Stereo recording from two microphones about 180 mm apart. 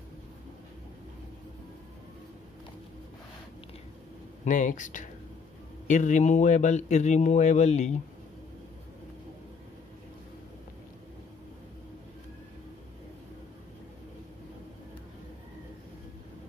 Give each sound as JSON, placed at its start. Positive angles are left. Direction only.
{"t": 4.5, "sound": "speech", "side_deg": 45}